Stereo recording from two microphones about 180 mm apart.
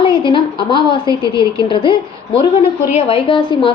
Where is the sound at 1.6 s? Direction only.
30° left (ahead or behind).